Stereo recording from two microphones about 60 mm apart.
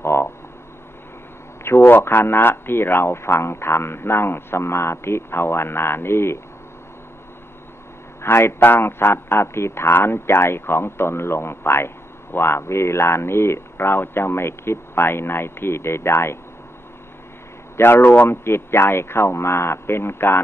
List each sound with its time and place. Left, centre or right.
0.0 s a sound: left
1.6 s a man's voice: left
8.2 s a man's voice: left
17.7 s a man's voice: left